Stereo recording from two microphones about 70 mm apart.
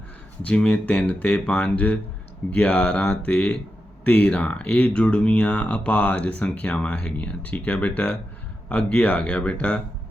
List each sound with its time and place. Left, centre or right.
0.4 s speech: centre